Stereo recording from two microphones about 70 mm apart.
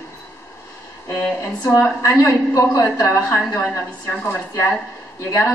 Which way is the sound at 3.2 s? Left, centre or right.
Left.